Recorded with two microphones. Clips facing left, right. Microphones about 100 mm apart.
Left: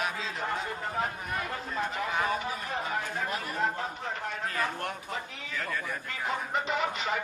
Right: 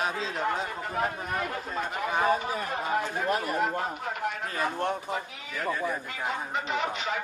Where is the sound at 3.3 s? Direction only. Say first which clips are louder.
Right 7 dB; 50° right (ahead or behind).